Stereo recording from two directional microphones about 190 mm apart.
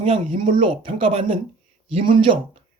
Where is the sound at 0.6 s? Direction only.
30° right (ahead or behind).